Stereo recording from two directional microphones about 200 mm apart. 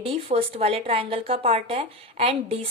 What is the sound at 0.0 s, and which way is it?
A woman's voice, 30° right (ahead or behind).